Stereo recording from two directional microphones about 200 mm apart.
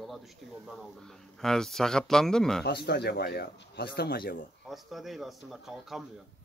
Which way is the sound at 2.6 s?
55° left (ahead or behind).